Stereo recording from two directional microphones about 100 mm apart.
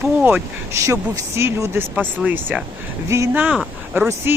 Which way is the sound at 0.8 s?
30° right (ahead or behind).